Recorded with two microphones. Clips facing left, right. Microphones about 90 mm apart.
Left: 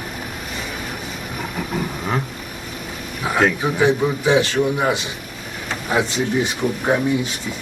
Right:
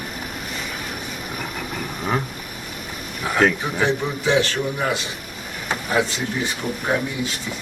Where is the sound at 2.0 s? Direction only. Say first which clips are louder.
Right 3 dB; centre (ahead or behind).